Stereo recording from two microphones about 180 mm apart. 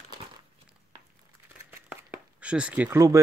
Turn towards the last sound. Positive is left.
turn(degrees=-15)  # may be behind; listen again after turning